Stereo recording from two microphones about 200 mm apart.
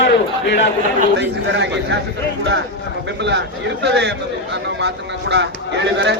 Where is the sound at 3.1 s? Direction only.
60° right (ahead or behind).